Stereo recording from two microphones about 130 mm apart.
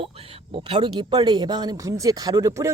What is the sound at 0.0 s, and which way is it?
Speech, 45° right (ahead or behind).